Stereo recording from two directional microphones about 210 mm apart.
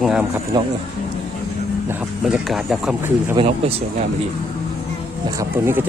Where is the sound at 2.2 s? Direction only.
Centre (ahead or behind).